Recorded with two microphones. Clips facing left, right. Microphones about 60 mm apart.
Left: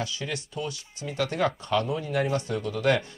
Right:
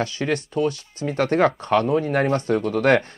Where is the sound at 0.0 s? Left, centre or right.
Right.